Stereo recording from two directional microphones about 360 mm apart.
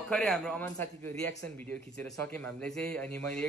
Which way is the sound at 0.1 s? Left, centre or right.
Centre.